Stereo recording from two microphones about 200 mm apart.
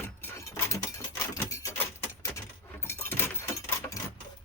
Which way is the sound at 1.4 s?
15° left (ahead or behind).